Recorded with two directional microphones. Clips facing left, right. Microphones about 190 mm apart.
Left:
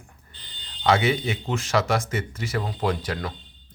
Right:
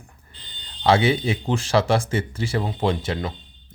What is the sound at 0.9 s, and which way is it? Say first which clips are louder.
Speech: right 3 dB; 30° right (ahead or behind).